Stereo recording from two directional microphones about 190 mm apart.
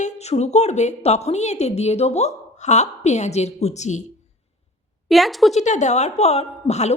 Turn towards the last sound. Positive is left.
turn(degrees=35)  # may be behind; listen again after turning